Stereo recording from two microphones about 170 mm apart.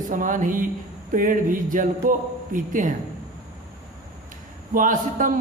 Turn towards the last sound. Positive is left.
turn(degrees=-50)  # may be behind; listen again after turning